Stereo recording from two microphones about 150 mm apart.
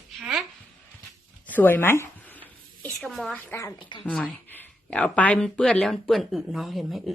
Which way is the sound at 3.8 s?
35° left (ahead or behind).